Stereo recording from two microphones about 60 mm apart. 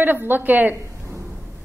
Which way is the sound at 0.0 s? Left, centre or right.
Right.